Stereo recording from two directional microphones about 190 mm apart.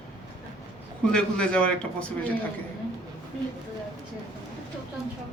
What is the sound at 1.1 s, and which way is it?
Speech, 5° left (ahead or behind).